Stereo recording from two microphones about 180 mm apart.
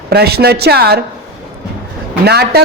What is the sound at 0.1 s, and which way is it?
Speech, 60° right (ahead or behind).